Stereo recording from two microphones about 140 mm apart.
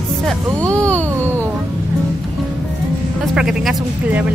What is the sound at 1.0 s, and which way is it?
Music, 15° right (ahead or behind).